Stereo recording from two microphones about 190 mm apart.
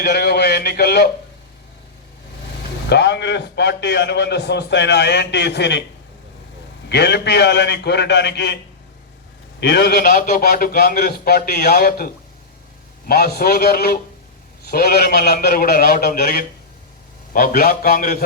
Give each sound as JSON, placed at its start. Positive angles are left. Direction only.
{"t": 0.0, "sound": "speech", "side_deg": 55}
{"t": 2.9, "sound": "a man's voice", "side_deg": 65}
{"t": 6.8, "sound": "a man's voice", "side_deg": 60}
{"t": 9.6, "sound": "a man's voice", "side_deg": 60}